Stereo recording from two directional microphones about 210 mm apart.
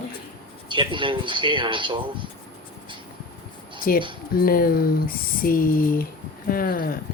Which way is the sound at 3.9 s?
45° left (ahead or behind).